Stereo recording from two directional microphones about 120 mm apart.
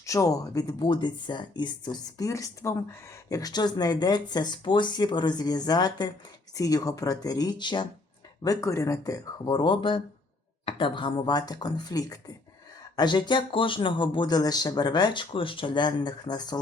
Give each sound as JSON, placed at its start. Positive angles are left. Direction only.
{"t": 0.0, "sound": "speech", "side_deg": 25}
{"t": 8.4, "sound": "speech", "side_deg": 25}
{"t": 9.5, "sound": "speech", "side_deg": 40}